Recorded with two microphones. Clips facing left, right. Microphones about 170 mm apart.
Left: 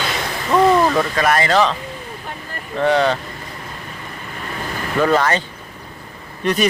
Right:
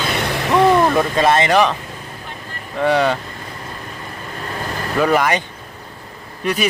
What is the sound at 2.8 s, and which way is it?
Speech, 10° right (ahead or behind).